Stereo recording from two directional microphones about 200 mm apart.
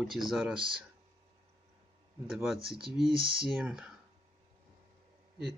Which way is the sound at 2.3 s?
Centre (ahead or behind).